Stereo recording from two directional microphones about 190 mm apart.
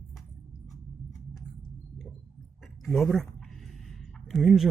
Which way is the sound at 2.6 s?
Centre (ahead or behind).